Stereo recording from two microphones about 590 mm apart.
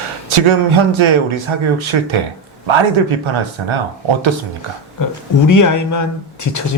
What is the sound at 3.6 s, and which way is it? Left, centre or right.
Speech, right.